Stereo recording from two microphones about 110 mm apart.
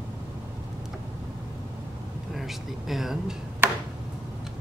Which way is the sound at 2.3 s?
Centre (ahead or behind).